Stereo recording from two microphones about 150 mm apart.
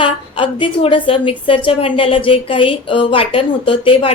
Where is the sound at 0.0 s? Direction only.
35° left (ahead or behind).